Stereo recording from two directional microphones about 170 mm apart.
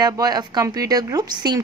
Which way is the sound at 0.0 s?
20° right (ahead or behind).